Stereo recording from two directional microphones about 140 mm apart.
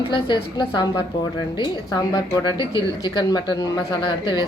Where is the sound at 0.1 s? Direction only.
35° left (ahead or behind).